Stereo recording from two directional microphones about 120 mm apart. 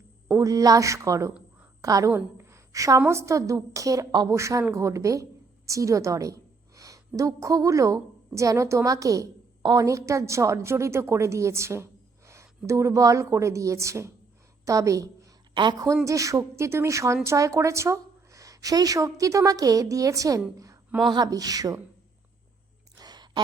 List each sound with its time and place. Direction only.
0.3 s a woman's voice: 30° right (ahead or behind)
15.5 s a woman's voice: 40° right (ahead or behind)
16.0 s a woman's voice: 25° right (ahead or behind)
23.0 s a sound: 35° right (ahead or behind)